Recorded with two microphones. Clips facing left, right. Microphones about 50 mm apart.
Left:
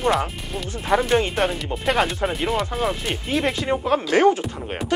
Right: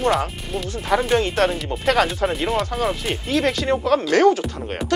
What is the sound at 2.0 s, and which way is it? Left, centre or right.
Speech, centre.